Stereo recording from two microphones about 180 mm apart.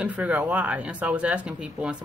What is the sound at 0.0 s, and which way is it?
Speech, 10° right (ahead or behind).